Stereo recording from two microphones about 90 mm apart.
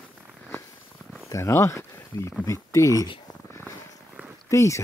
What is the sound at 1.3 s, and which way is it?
Speech, 30° left (ahead or behind).